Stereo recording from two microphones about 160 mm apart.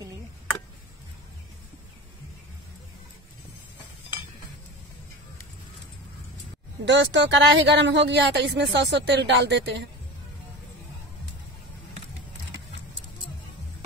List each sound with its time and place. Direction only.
6.8 s speech: 90° right